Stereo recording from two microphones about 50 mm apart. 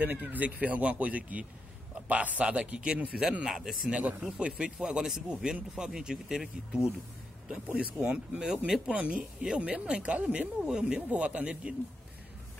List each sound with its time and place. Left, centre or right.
0.0 s speech: right; by 3.9 s centre
3.9 s speech: right
8.9 s speech: right